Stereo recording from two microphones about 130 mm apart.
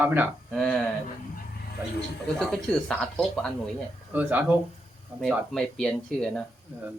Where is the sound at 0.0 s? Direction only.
15° right (ahead or behind).